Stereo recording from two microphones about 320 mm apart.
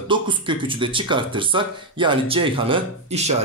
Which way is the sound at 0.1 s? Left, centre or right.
Centre.